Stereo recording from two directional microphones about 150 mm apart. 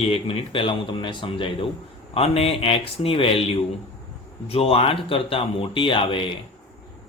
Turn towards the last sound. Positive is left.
turn(degrees=35)  # may be behind; listen again after turning